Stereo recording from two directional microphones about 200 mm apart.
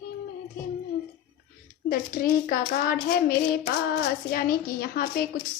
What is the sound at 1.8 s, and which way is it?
A woman's voice, 50° left (ahead or behind).